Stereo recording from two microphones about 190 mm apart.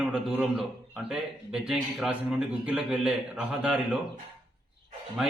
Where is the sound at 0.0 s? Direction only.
5° right (ahead or behind).